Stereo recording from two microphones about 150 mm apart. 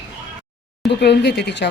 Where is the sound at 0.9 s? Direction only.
90° left.